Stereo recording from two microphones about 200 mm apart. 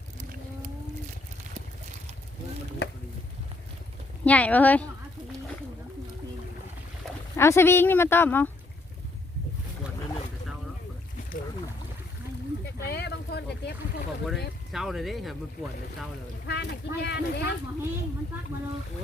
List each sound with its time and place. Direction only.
2.8 s a sound: 55° left (ahead or behind)
4.3 s speech: 5° left (ahead or behind)
7.3 s speech: 15° left (ahead or behind)
12.6 s a sound: 55° left (ahead or behind)
14.7 s speech: centre (ahead or behind)
16.5 s speech: 55° left (ahead or behind)